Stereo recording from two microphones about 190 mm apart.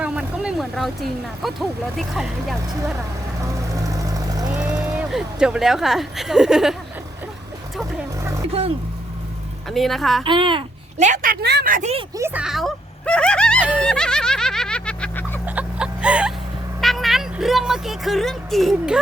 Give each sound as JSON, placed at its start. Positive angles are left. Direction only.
{"t": 0.0, "sound": "speech", "side_deg": -5}
{"t": 3.4, "sound": "vehicle", "side_deg": -15}
{"t": 4.5, "sound": "speech", "side_deg": -5}
{"t": 9.6, "sound": "speech", "side_deg": 0}
{"t": 10.2, "sound": "speech", "side_deg": -25}
{"t": 11.0, "sound": "a woman's voice", "side_deg": -45}
{"t": 12.1, "sound": "speech", "side_deg": -10}
{"t": 13.6, "sound": "music", "side_deg": -5}
{"t": 13.8, "sound": "a sound", "side_deg": 5}
{"t": 15.4, "sound": "music", "side_deg": -5}
{"t": 16.8, "sound": "speech", "side_deg": 0}